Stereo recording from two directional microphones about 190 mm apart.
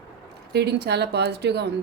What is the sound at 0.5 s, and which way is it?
A woman's voice, 60° right (ahead or behind).